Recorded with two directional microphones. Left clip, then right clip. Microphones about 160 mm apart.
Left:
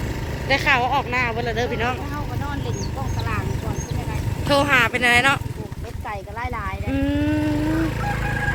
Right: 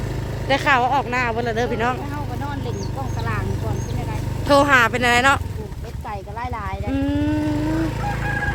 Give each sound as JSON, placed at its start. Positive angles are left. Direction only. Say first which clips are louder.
{"t": 0.4, "sound": "speech", "louder": "right 1 dB", "side_deg": -55}
{"t": 4.4, "sound": "speech", "louder": "right 3 dB", "side_deg": -40}
{"t": 6.9, "sound": "livestock", "louder": "even", "side_deg": -5}